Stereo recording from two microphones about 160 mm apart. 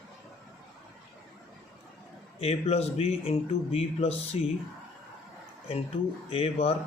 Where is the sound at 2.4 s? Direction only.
40° left (ahead or behind).